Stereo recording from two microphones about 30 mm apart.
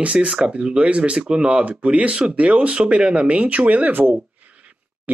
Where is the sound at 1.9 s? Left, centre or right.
Right.